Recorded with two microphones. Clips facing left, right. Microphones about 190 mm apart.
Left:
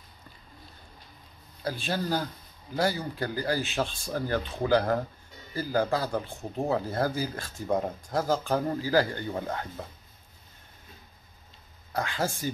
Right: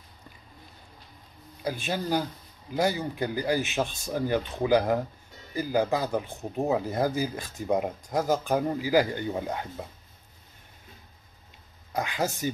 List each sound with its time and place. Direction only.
1.6 s speech: 15° right (ahead or behind)
11.9 s speech: 15° right (ahead or behind)